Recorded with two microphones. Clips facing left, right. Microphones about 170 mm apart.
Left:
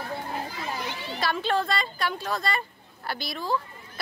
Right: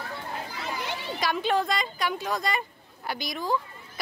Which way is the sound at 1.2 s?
15° right (ahead or behind).